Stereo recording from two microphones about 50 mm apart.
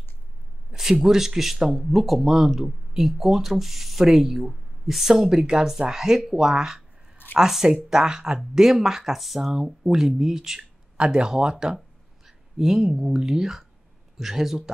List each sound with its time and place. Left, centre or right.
0.7 s speech: centre
11.0 s a man's voice: centre